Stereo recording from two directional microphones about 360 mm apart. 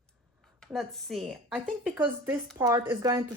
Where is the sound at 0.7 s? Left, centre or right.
Centre.